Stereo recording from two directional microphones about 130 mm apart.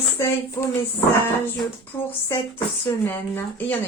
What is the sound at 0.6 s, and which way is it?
Speech, 20° left (ahead or behind).